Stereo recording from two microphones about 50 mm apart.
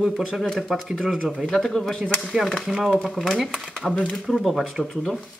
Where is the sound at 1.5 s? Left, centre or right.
Centre.